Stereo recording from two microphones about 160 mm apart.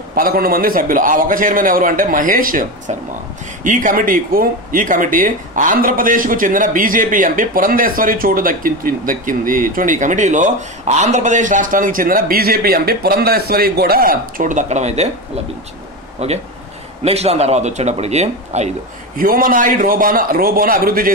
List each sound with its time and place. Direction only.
0.1 s speech: 70° right (ahead or behind); by 15.0 s 45° right (ahead or behind)
16.2 s speech: 40° right (ahead or behind)
19.1 s speech: 60° right (ahead or behind)